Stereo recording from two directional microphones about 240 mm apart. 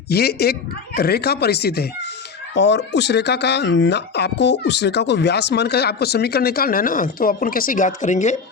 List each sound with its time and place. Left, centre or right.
0.1 s speech: left